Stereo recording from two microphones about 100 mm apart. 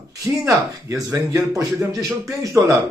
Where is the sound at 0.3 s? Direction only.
30° right (ahead or behind).